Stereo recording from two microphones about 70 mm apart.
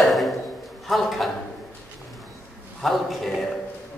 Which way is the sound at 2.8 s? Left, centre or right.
Centre.